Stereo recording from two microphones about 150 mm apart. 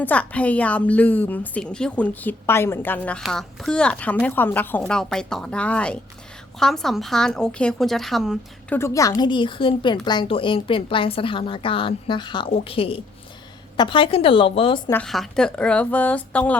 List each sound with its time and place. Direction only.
0.0 s a woman's voice: 10° left (ahead or behind)
8.7 s a woman's voice: 20° left (ahead or behind); by 14.8 s 40° left (ahead or behind)
15.0 s a woman's voice: centre (ahead or behind)